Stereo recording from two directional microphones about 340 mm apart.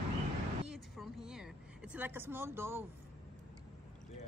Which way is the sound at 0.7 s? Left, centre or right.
Centre.